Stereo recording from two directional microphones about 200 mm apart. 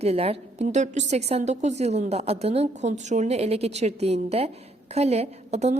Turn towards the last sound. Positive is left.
turn(degrees=-35)  # may be behind; listen again after turning